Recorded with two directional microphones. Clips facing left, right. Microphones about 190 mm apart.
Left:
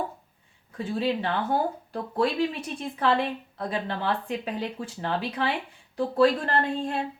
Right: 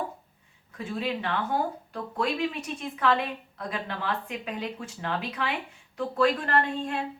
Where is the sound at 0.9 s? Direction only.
30° left (ahead or behind).